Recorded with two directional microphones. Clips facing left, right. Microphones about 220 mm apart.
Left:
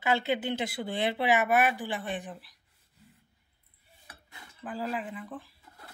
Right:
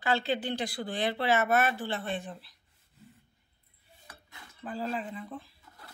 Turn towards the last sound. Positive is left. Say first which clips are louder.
# even
turn(degrees=15)  # may be behind; listen again after turning